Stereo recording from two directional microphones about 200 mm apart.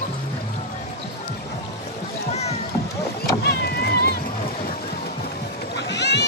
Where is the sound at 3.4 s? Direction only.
55° left (ahead or behind).